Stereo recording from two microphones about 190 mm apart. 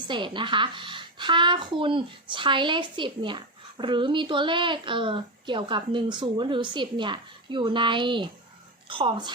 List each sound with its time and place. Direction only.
0.1 s a woman's voice: 25° right (ahead or behind)